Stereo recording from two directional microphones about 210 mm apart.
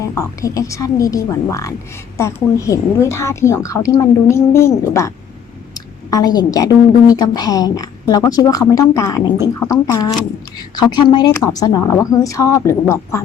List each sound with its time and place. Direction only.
0.0 s a woman's voice: 15° left (ahead or behind)